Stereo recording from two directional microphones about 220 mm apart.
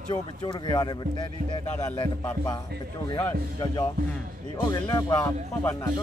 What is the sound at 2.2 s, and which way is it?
Speech, 15° left (ahead or behind).